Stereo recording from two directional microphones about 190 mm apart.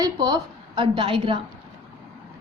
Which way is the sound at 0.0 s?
20° right (ahead or behind).